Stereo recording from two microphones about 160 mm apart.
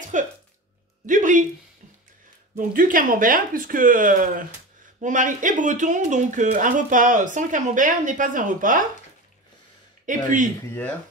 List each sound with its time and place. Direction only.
0.1 s speech: 50° right (ahead or behind)
2.5 s speech: 60° right (ahead or behind)
10.0 s speech: 55° right (ahead or behind)